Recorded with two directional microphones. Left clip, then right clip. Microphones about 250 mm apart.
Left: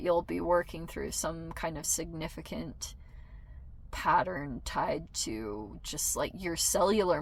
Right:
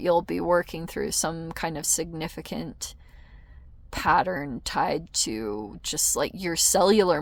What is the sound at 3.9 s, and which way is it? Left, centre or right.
Speech, right.